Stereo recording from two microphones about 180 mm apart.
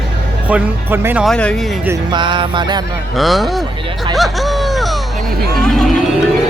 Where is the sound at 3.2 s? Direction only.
Centre (ahead or behind).